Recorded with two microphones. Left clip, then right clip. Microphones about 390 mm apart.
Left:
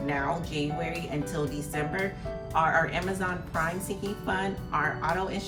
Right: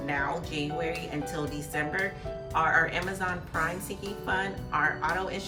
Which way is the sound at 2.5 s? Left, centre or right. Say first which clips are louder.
Even; centre.